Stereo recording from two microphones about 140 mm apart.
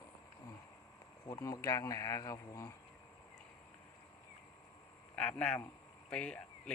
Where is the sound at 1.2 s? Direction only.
25° left (ahead or behind).